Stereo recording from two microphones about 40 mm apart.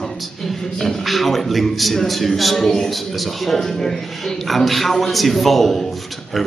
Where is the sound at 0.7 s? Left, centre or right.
Centre.